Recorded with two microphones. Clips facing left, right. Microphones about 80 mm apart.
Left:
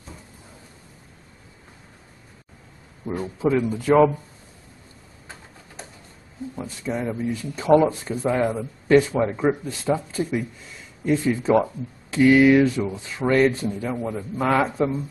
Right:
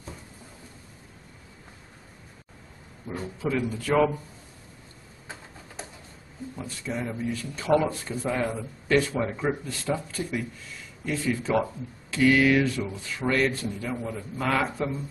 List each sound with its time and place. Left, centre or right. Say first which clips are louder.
3.2 s speech: left 6 dB; left
6.6 s speech: left 5 dB; left